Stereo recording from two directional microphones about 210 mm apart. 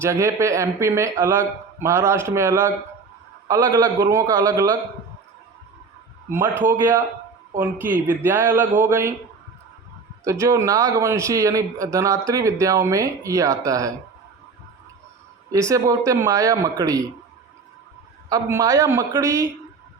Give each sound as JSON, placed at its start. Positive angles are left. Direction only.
{"t": 0.0, "sound": "a man's voice", "side_deg": -15}
{"t": 6.6, "sound": "a man's voice", "side_deg": -10}
{"t": 8.2, "sound": "a man's voice", "side_deg": -10}
{"t": 10.2, "sound": "a man's voice", "side_deg": -15}
{"t": 15.5, "sound": "a man's voice", "side_deg": -15}
{"t": 18.3, "sound": "a man's voice", "side_deg": -15}